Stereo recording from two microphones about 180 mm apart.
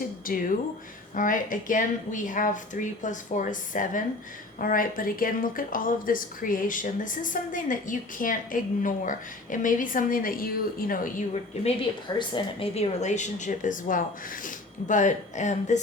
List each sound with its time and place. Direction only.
0.3 s speech: 50° left (ahead or behind)
11.6 s a woman's voice: 30° left (ahead or behind)